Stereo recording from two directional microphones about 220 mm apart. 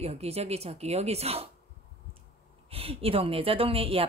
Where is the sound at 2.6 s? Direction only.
25° right (ahead or behind).